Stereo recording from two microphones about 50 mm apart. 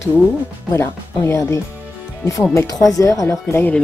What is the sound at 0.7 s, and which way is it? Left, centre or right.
Speech, left.